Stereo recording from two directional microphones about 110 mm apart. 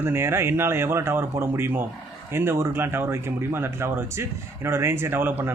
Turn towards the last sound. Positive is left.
turn(degrees=-20)  # may be behind; listen again after turning